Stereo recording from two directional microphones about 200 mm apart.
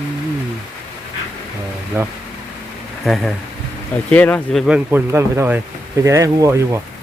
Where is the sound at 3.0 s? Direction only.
Centre (ahead or behind).